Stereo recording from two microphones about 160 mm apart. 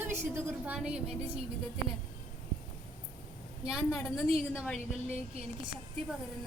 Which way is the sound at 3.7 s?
5° right (ahead or behind).